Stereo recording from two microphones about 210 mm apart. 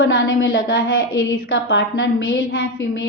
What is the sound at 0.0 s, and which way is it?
A woman's voice, 65° left (ahead or behind).